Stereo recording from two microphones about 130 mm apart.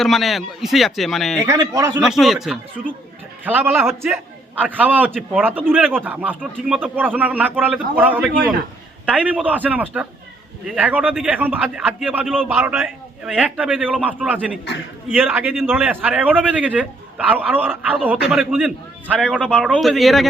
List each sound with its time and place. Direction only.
0.0 s speech: centre (ahead or behind)
1.5 s a man's voice: 25° right (ahead or behind)
2.0 s speech: centre (ahead or behind)
3.4 s speech: 15° right (ahead or behind)